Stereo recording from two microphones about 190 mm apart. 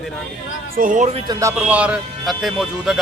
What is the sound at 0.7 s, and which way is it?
Speech, 45° right (ahead or behind).